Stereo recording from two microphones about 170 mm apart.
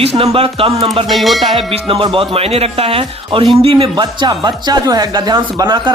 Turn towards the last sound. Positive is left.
turn(degrees=-25)  # may be behind; listen again after turning